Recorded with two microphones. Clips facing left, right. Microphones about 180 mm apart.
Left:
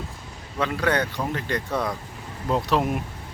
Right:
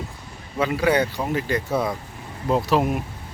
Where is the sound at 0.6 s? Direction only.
5° right (ahead or behind).